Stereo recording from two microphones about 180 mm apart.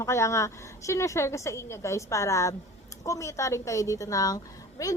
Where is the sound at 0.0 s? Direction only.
15° left (ahead or behind).